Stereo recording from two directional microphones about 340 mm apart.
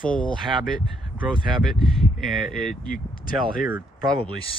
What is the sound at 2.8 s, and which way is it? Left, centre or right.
Speech, left.